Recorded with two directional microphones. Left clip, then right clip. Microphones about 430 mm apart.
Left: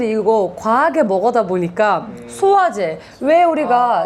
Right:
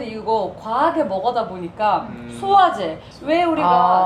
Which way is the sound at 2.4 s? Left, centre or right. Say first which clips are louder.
Left 1 dB; left.